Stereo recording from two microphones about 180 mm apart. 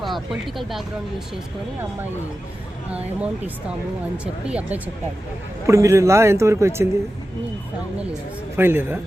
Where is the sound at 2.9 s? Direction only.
5° right (ahead or behind).